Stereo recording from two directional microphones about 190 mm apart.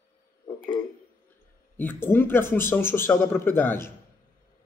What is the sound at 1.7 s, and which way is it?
A man's voice, 10° left (ahead or behind).